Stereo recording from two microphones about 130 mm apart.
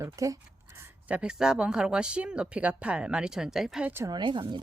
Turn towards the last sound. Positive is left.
turn(degrees=-35)  # may be behind; listen again after turning